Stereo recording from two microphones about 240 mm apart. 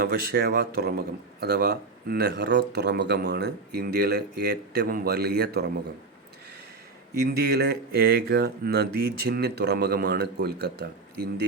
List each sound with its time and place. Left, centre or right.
0.0 s a man's voice: right
7.3 s a man's voice: right